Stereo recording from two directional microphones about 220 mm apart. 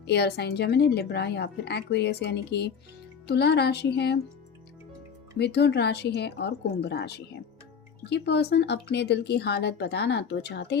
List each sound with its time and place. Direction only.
0.0 s a woman's voice: 50° left (ahead or behind)
5.4 s a woman's voice: 50° left (ahead or behind)